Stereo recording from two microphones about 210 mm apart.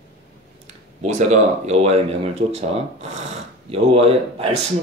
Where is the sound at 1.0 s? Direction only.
35° right (ahead or behind).